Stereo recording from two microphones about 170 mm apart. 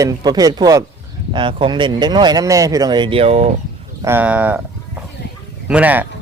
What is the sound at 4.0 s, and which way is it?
Speech, 15° right (ahead or behind).